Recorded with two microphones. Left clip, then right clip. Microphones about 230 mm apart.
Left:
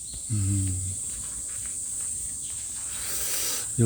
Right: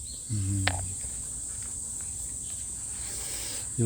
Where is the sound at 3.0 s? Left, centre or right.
Left.